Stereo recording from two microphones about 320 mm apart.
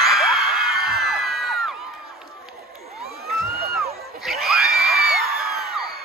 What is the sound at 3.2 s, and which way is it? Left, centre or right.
Crowd, right.